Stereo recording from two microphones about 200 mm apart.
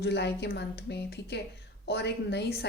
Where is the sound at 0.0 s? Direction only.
55° left (ahead or behind).